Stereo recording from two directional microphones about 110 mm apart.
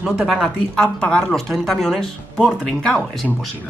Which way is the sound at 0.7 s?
5° left (ahead or behind).